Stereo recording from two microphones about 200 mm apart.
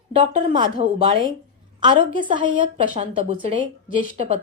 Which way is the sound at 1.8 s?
25° right (ahead or behind).